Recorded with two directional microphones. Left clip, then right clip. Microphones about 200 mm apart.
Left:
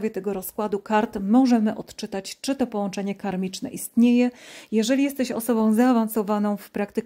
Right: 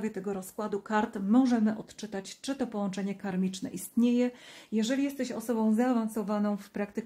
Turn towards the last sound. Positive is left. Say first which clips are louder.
# left 8 dB
turn(degrees=40)  # may be behind; listen again after turning